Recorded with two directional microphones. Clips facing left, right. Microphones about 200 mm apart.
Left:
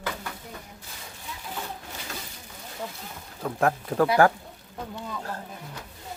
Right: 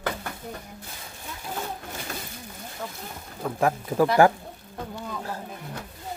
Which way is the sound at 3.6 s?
5° right (ahead or behind).